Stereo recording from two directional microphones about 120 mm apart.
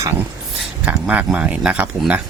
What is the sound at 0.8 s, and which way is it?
Speech, 10° right (ahead or behind).